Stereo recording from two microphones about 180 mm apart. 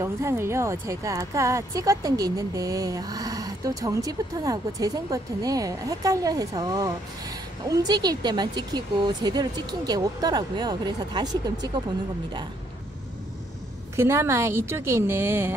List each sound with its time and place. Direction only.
0.0 s speech: 15° right (ahead or behind)
13.9 s a woman's voice: 15° right (ahead or behind)